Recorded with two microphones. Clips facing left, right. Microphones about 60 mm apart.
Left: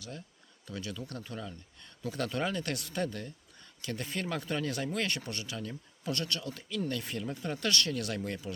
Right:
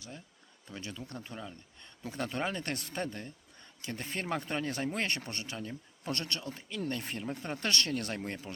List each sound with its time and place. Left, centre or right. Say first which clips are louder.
0.7 s speech: left 3 dB; right